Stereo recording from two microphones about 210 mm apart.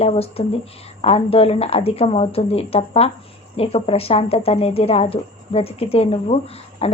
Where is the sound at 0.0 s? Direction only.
30° left (ahead or behind).